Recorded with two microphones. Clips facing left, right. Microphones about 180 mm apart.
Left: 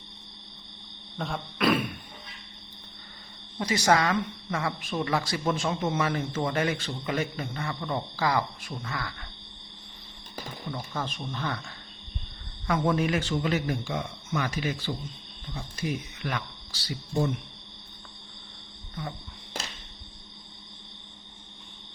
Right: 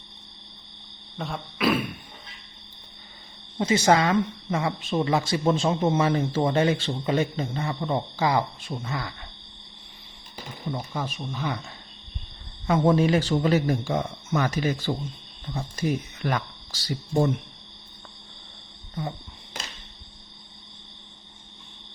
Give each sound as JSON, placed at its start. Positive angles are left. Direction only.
{"t": 1.2, "sound": "a sound", "side_deg": 0}
{"t": 3.6, "sound": "speech", "side_deg": -25}
{"t": 10.9, "sound": "speech", "side_deg": -10}
{"t": 12.6, "sound": "speech", "side_deg": -25}